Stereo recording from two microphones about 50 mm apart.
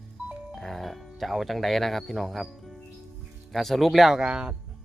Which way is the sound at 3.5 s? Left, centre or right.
Centre.